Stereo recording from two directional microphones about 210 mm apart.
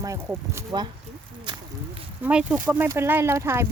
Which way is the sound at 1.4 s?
20° right (ahead or behind).